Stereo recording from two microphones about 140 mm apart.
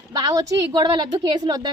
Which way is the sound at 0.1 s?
25° right (ahead or behind).